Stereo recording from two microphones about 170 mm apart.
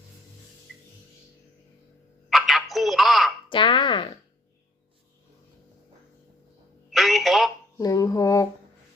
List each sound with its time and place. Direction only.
2.3 s a sound: centre (ahead or behind)
3.5 s speech: 30° left (ahead or behind)
6.9 s telephone: centre (ahead or behind)
7.8 s dishes: 20° left (ahead or behind)